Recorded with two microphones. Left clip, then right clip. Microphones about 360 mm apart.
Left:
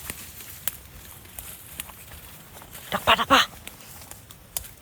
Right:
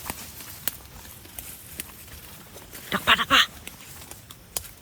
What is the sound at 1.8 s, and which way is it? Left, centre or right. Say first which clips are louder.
Clip-clop: even; centre.